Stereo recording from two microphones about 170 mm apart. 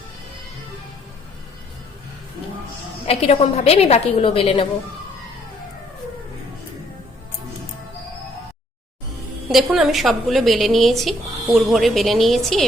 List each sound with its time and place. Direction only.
3.1 s a woman's voice: 35° left (ahead or behind)
9.5 s a woman's voice: centre (ahead or behind)